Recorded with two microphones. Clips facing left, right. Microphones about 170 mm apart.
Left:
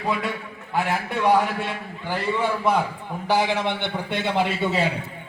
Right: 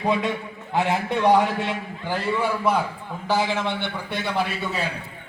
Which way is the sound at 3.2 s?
15° left (ahead or behind).